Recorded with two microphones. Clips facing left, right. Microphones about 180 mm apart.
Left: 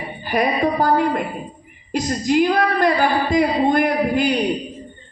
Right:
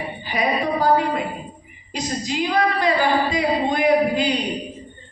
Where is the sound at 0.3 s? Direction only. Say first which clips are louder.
Left 4 dB; 55° left (ahead or behind).